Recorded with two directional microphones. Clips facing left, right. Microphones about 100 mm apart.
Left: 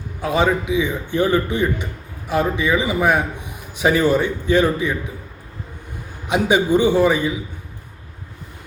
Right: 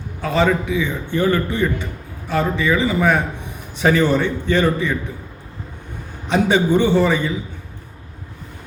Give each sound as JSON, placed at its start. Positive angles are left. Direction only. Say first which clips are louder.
{"t": 0.2, "sound": "a man's voice", "louder": "right 1 dB", "side_deg": 15}
{"t": 6.2, "sound": "a man's voice", "louder": "right 1 dB", "side_deg": 10}